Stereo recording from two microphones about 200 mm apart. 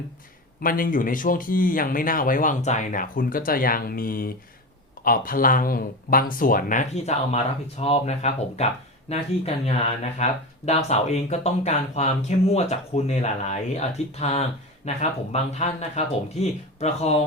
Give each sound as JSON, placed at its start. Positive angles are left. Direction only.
{"t": 0.6, "sound": "speech", "side_deg": 45}